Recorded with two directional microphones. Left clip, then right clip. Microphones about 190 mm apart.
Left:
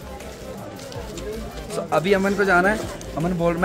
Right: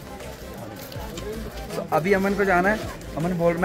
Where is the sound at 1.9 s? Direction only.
Centre (ahead or behind).